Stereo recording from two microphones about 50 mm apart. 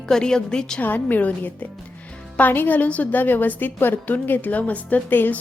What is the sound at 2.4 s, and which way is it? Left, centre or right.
A woman's voice, left.